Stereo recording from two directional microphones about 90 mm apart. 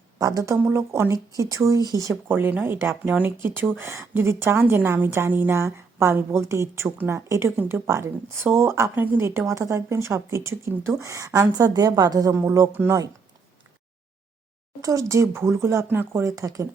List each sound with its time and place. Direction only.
0.2 s speech: 40° right (ahead or behind)
0.6 s a woman's voice: 30° right (ahead or behind)
2.2 s a woman's voice: 25° right (ahead or behind)
6.8 s a woman's voice: 20° right (ahead or behind)
7.3 s a woman's voice: 30° right (ahead or behind)
12.4 s speech: 30° right (ahead or behind)
14.8 s speech: 40° right (ahead or behind)
16.2 s speech: 35° right (ahead or behind)